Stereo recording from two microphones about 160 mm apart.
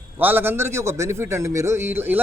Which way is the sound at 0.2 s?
10° right (ahead or behind).